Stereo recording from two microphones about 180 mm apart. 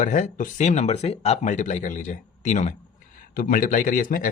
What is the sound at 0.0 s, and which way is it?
Speech, 45° left (ahead or behind).